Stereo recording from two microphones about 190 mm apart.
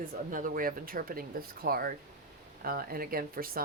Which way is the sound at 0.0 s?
45° right (ahead or behind).